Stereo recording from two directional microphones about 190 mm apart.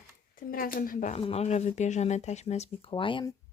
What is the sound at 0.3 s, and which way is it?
Speech, 50° left (ahead or behind).